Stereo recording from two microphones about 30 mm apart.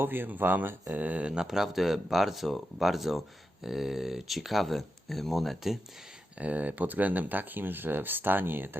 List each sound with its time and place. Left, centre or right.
0.3 s speech: right
1.5 s speech: centre
6.4 s speech: right